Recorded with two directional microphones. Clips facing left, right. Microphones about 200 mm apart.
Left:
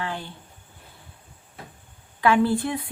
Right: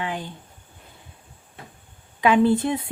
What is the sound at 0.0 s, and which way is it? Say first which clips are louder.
Speech: right 2 dB; 15° right (ahead or behind).